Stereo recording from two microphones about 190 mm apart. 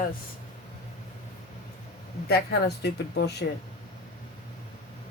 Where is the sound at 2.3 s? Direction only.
60° left (ahead or behind).